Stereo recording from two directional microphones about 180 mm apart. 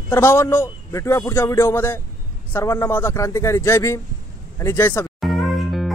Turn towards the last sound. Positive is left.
turn(degrees=0)  # may be behind; listen again after turning